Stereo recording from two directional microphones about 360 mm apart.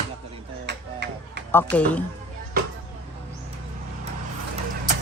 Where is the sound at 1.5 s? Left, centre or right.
Centre.